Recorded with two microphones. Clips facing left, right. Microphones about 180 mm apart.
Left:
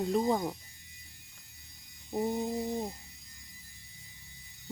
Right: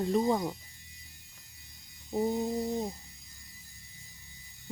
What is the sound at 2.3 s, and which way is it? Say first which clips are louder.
Speech: right 2 dB; centre (ahead or behind).